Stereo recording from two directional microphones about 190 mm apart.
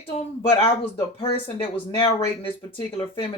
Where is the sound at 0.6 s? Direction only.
30° left (ahead or behind).